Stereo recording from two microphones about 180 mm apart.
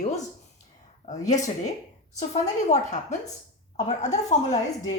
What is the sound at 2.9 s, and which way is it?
A woman's voice, 40° left (ahead or behind).